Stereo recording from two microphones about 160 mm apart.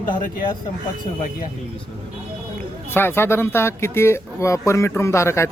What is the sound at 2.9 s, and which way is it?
Speech, 15° left (ahead or behind).